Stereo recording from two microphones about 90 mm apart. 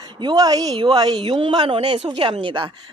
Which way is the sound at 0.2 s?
50° right (ahead or behind).